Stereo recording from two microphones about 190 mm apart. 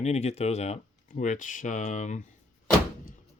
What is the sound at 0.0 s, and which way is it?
Speech, 35° left (ahead or behind).